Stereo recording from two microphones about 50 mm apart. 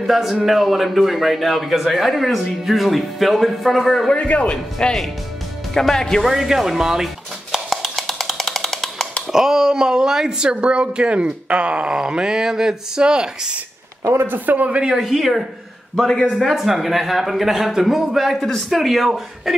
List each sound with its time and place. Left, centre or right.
0.0 s a man's voice: centre
4.1 s a man's voice: left
6.2 s speech: centre
7.7 s wood block: centre
9.3 s speech: centre
14.1 s a man's voice: right
15.0 s a man's voice: centre
16.5 s a man's voice: centre